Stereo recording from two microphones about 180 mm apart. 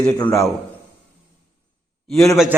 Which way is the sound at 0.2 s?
15° left (ahead or behind).